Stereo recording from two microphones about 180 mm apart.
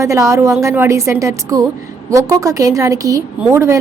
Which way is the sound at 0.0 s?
15° right (ahead or behind).